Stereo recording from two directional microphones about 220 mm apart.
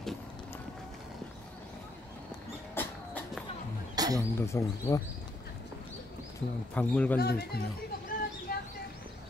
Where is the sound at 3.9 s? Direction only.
15° right (ahead or behind).